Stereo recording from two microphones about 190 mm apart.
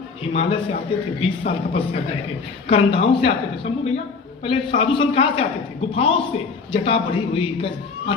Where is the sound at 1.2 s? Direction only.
30° left (ahead or behind).